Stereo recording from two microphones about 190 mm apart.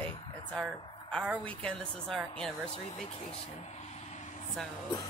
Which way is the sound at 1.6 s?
5° left (ahead or behind).